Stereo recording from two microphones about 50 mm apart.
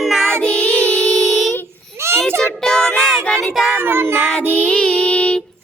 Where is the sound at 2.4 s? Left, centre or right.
Centre.